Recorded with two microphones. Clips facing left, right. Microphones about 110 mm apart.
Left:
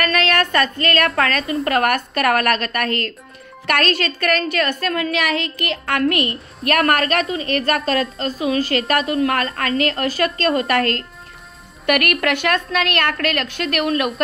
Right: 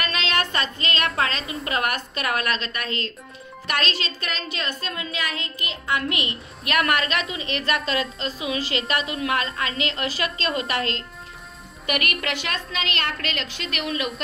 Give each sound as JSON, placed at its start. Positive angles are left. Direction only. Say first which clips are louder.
{"t": 0.0, "sound": "a woman's voice", "louder": "left 7 dB", "side_deg": 55}
{"t": 13.9, "sound": "speech", "louder": "left 7 dB", "side_deg": 70}